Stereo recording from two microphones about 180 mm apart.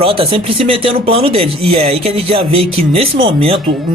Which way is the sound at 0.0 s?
30° right (ahead or behind).